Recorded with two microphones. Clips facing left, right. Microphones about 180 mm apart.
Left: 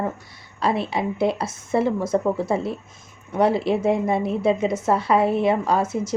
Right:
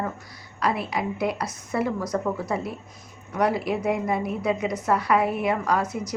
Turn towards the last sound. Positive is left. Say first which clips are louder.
# left 3 dB
turn(degrees=25)  # may be behind; listen again after turning